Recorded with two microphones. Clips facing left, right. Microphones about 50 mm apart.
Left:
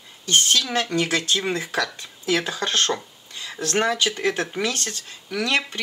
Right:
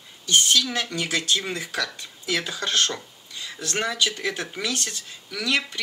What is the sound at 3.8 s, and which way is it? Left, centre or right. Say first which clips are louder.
Speech: left 3 dB; left.